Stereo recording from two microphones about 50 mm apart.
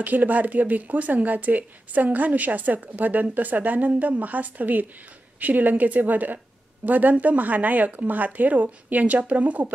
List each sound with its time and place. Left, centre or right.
0.0 s a woman's voice: right